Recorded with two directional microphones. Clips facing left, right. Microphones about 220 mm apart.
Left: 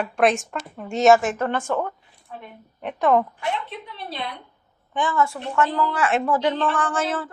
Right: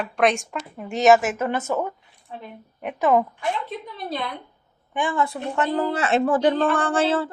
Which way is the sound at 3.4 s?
45° right (ahead or behind).